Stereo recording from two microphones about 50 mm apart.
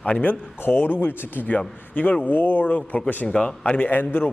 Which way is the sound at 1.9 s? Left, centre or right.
Left.